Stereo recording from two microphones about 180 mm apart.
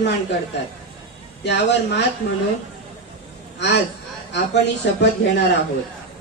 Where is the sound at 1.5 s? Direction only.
75° left (ahead or behind).